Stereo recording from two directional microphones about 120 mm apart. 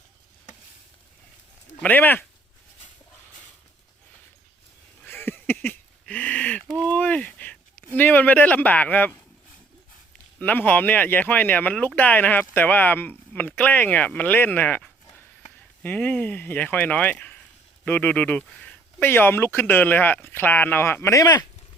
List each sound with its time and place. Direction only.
1.8 s speech: 15° left (ahead or behind)
5.0 s a sound: 20° left (ahead or behind)
10.4 s speech: 15° left (ahead or behind)